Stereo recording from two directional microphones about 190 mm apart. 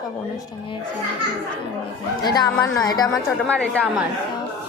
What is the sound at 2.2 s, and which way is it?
Speech, 20° left (ahead or behind).